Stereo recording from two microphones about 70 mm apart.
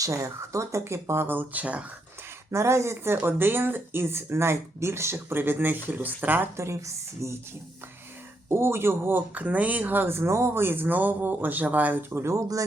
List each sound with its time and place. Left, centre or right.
0.0 s speech: right
2.5 s speech: right
6.6 s speech: right
8.4 s speech: right
12.1 s speech: right